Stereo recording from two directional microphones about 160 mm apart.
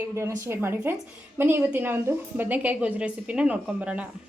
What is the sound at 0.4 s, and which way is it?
A woman's voice, 15° right (ahead or behind).